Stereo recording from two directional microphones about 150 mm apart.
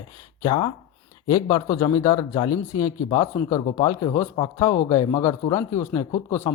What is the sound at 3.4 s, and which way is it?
Speech, 20° left (ahead or behind).